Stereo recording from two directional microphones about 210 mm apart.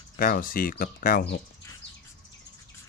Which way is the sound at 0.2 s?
40° left (ahead or behind).